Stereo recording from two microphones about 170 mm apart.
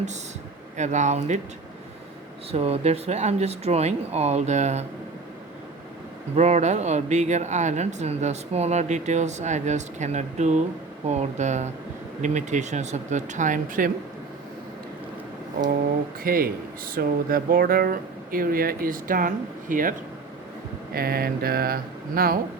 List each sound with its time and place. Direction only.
0.8 s speech: 45° right (ahead or behind)
2.5 s speech: 35° right (ahead or behind)
6.3 s speech: 40° right (ahead or behind)
16.2 s speech: 60° right (ahead or behind)
20.9 s speech: 65° right (ahead or behind)